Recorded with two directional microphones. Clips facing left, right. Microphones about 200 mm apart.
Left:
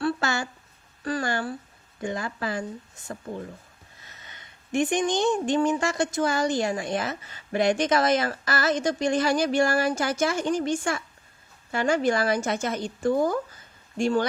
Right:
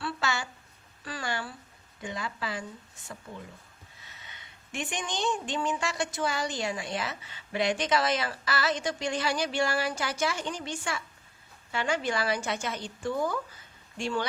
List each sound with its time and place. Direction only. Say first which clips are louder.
0.0 s a sound: left 6 dB; 45° left (ahead or behind)
1.0 s speech: left 8 dB; 45° left (ahead or behind)
4.3 s speech: left 13 dB; 45° left (ahead or behind)